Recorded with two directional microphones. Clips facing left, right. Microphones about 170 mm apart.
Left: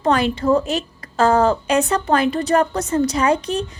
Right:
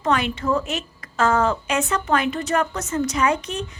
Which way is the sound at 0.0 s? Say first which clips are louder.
Left 4 dB; 35° left (ahead or behind).